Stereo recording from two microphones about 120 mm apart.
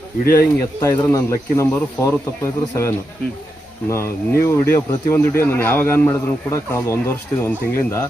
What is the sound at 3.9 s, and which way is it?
Speech, 20° left (ahead or behind).